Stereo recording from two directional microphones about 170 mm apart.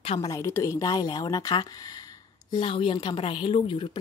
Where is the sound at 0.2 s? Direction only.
20° left (ahead or behind).